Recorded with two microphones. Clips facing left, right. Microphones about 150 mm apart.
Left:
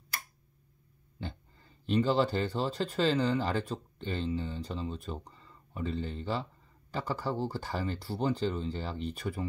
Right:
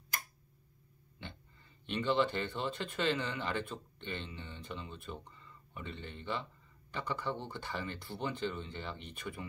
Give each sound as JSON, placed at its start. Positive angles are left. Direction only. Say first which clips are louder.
{"t": 1.2, "sound": "speech", "louder": "left 8 dB", "side_deg": 35}